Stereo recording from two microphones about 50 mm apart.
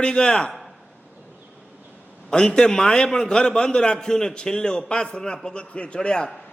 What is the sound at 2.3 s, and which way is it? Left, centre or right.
A man's voice, centre.